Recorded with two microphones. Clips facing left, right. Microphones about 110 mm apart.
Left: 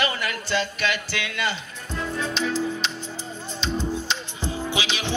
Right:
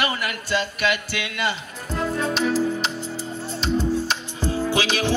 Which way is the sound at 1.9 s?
50° right (ahead or behind).